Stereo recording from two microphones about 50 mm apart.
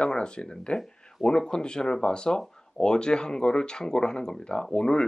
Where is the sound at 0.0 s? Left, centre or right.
Centre.